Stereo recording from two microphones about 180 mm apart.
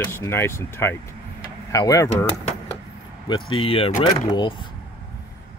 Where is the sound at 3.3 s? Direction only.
30° left (ahead or behind).